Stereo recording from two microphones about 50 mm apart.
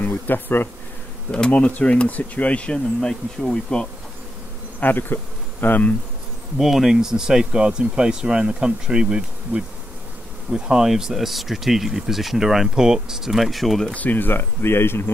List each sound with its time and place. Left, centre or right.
0.0 s speech: left
1.3 s speech: left
4.7 s insect: left
6.6 s speech: centre
13.9 s speech: left